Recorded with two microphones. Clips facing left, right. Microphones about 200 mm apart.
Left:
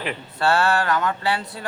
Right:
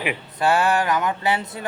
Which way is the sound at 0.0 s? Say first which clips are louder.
Right 1 dB; 15° right (ahead or behind).